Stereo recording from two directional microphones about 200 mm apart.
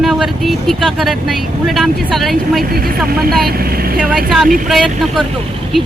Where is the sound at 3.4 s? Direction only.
50° right (ahead or behind).